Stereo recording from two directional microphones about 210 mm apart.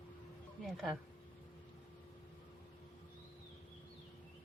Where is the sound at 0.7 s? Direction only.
Centre (ahead or behind).